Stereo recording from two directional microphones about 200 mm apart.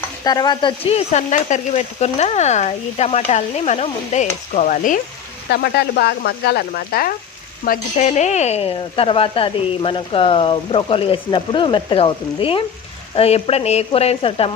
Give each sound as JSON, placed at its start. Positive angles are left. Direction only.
{"t": 0.3, "sound": "speech", "side_deg": 20}
{"t": 5.5, "sound": "speech", "side_deg": 55}